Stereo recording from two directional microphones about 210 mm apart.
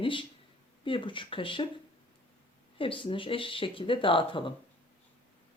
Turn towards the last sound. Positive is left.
turn(degrees=25)  # may be behind; listen again after turning